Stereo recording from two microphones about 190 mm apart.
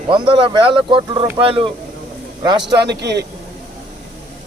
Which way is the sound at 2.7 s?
60° right (ahead or behind).